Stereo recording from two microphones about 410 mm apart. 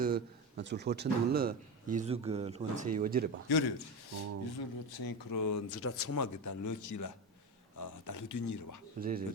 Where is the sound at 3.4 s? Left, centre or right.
Left.